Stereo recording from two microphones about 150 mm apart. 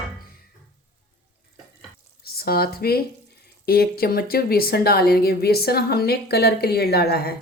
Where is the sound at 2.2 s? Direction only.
90° left.